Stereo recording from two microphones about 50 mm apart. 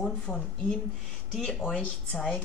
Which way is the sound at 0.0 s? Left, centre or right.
Centre.